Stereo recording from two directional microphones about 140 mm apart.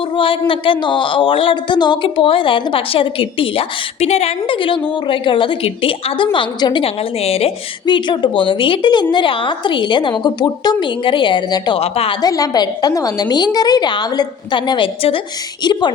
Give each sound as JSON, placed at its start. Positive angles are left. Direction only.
{"t": 0.2, "sound": "speech", "side_deg": 40}
{"t": 6.8, "sound": "a woman's voice", "side_deg": 45}
{"t": 7.9, "sound": "speech", "side_deg": 35}
{"t": 11.8, "sound": "a woman's voice", "side_deg": 45}
{"t": 12.2, "sound": "a woman's voice", "side_deg": 25}